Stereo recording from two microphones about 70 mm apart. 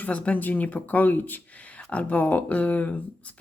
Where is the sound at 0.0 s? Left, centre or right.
Left.